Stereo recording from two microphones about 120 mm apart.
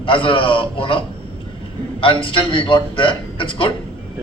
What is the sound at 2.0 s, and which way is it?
A man's voice, 45° left (ahead or behind).